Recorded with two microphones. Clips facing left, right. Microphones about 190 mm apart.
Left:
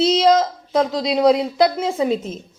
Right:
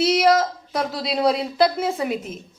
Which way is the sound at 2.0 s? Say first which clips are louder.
Left 5 dB; 30° left (ahead or behind).